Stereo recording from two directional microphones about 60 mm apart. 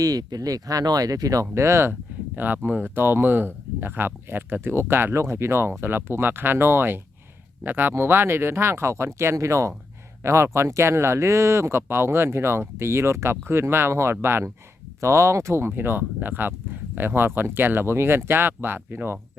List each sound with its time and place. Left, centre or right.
0.0 s speech: right
1.5 s speech: right
1.9 s a sound: right
2.6 s speech: right
5.2 s speech: right
15.0 s speech: right